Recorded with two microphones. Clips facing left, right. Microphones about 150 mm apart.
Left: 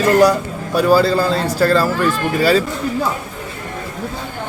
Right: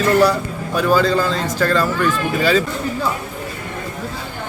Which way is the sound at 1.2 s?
35° left (ahead or behind).